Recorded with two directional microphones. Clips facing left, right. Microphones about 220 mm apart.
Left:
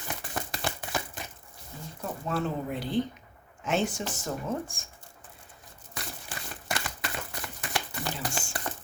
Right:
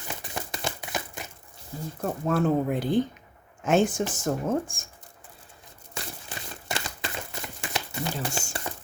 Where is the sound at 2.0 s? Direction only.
50° right (ahead or behind).